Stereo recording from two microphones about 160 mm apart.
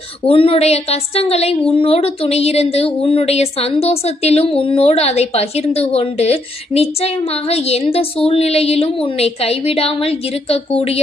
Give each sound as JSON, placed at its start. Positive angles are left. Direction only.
{"t": 0.3, "sound": "a woman's voice", "side_deg": 35}